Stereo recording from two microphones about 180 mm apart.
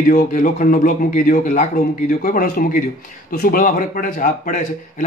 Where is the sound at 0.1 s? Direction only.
45° left (ahead or behind).